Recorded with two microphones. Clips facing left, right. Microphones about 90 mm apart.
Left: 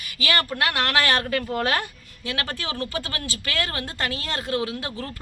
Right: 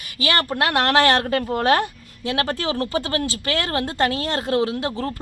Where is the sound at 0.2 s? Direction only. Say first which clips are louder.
Right 3 dB; 25° right (ahead or behind).